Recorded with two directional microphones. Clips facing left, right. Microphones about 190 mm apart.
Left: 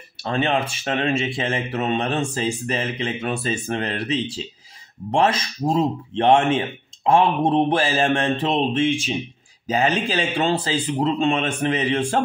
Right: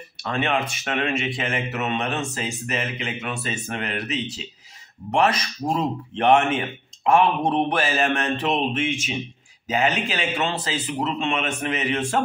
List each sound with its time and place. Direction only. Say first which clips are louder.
0.2 s speech: left 2 dB; 30° left (ahead or behind)